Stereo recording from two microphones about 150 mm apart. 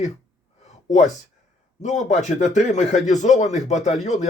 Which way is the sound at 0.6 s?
50° left (ahead or behind).